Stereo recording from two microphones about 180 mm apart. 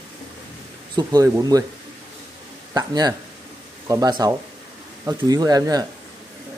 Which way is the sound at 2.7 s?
20° right (ahead or behind).